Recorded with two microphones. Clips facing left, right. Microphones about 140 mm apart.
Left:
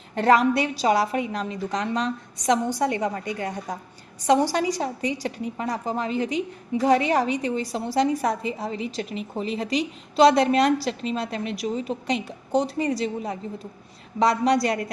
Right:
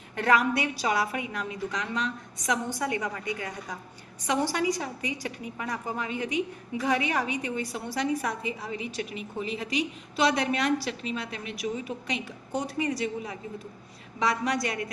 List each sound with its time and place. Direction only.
0.2 s a woman's voice: 30° left (ahead or behind)